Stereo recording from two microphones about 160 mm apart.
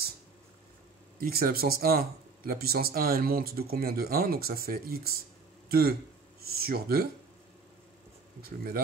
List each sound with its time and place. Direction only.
1.2 s speech: 70° right (ahead or behind)
8.4 s speech: 70° right (ahead or behind)